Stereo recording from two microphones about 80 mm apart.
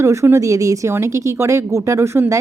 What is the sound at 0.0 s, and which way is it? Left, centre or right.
A woman's voice, right.